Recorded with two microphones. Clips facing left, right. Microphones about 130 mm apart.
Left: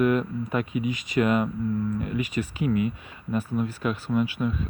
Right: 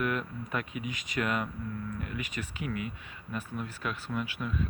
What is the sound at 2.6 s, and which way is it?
Speech, 20° left (ahead or behind).